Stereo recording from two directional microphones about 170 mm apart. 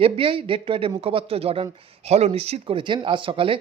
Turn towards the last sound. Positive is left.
turn(degrees=-30)  # may be behind; listen again after turning